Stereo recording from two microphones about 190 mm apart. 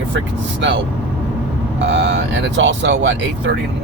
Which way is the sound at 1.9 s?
70° right (ahead or behind).